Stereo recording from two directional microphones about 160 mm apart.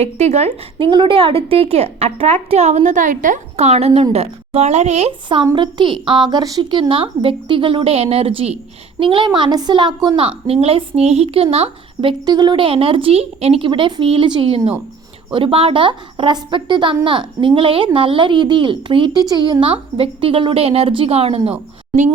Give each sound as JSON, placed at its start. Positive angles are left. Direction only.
{"t": 0.0, "sound": "a woman's voice", "side_deg": -45}
{"t": 0.9, "sound": "a woman's voice", "side_deg": -30}